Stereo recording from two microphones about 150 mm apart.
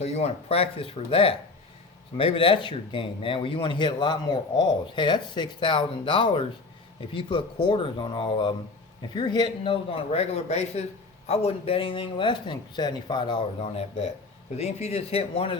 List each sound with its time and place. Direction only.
0.0 s speech: 45° left (ahead or behind)
13.6 s speech: 45° left (ahead or behind)